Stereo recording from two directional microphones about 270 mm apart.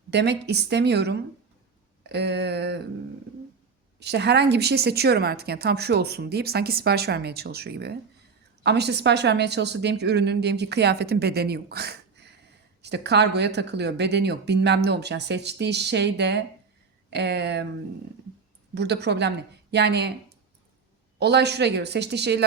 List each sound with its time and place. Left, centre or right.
0.1 s a woman's voice: right
4.0 s a woman's voice: right
18.7 s a woman's voice: right
21.2 s a woman's voice: right